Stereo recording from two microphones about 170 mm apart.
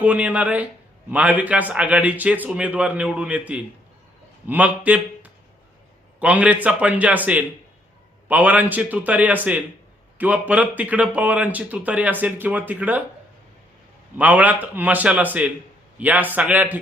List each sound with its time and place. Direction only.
0.0 s a man's voice: 10° right (ahead or behind)
14.2 s a man's voice: 10° right (ahead or behind)